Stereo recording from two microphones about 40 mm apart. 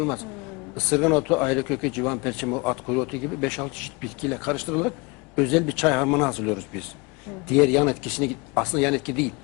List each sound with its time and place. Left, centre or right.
0.0 s speech: centre